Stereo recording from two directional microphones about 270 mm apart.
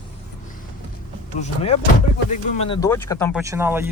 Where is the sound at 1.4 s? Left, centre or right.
Left.